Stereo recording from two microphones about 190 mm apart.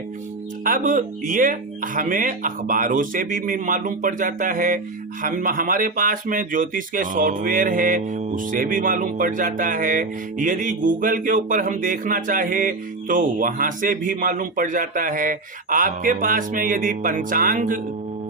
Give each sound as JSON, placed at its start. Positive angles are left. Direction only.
{"t": 0.6, "sound": "speech", "side_deg": -45}